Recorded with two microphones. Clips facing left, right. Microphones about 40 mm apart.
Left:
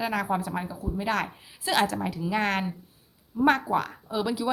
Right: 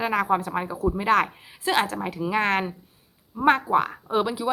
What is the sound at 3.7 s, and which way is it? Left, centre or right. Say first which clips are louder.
Speech: right 5 dB; right.